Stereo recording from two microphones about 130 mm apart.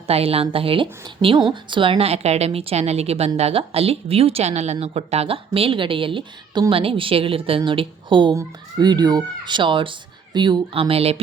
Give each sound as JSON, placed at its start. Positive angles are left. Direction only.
{"t": 0.1, "sound": "a woman's voice", "side_deg": -50}